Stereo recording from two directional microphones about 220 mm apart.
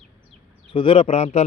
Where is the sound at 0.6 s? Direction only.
25° left (ahead or behind).